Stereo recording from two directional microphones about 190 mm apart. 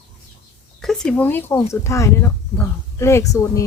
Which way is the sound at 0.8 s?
5° left (ahead or behind).